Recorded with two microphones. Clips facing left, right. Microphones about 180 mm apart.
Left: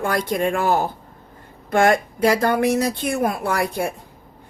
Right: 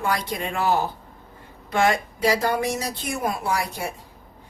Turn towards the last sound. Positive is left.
turn(degrees=55)  # may be behind; listen again after turning